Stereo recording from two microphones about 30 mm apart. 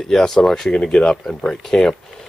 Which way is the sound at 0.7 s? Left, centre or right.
Left.